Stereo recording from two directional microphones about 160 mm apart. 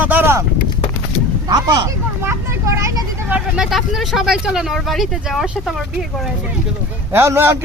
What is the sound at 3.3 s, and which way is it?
Speech, 5° right (ahead or behind).